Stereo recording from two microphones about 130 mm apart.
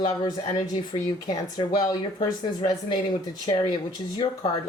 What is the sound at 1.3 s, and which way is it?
Speech, 30° left (ahead or behind).